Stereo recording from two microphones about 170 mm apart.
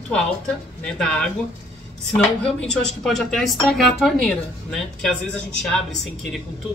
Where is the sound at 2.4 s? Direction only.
5° left (ahead or behind).